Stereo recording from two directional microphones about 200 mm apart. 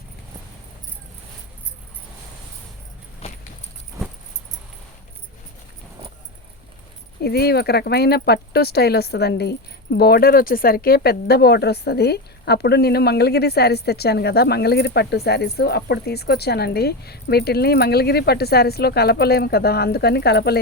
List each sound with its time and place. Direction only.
7.2 s speech: 50° left (ahead or behind)